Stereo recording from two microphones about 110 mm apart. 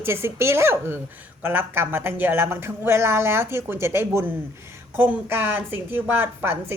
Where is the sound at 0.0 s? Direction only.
20° right (ahead or behind).